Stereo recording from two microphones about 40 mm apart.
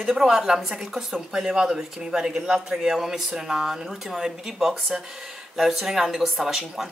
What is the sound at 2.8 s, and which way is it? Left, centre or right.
Speech, centre.